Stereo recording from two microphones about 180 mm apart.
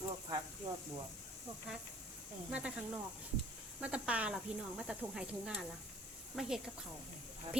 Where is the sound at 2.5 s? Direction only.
5° right (ahead or behind).